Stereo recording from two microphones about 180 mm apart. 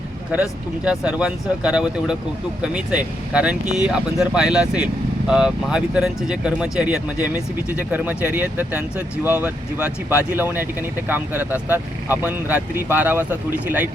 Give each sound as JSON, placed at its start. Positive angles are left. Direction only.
{"t": 0.9, "sound": "speech", "side_deg": -5}